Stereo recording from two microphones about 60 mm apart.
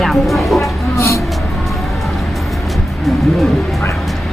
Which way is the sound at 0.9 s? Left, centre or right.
Left.